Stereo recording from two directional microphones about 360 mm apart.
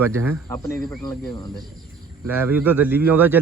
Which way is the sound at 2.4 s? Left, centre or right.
Centre.